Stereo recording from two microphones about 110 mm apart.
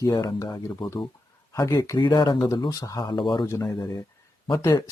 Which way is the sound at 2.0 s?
40° left (ahead or behind).